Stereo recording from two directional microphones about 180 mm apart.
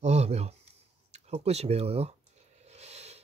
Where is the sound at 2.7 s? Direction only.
35° right (ahead or behind).